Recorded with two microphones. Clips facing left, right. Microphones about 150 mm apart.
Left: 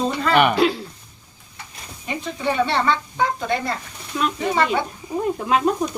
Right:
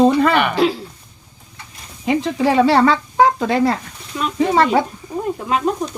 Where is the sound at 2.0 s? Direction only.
90° right.